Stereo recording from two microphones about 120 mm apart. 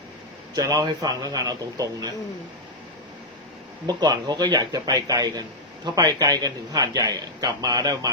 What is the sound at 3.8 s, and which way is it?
A man's voice, 35° right (ahead or behind).